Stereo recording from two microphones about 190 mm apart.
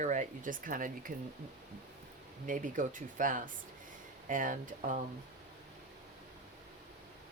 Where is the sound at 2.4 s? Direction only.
45° right (ahead or behind).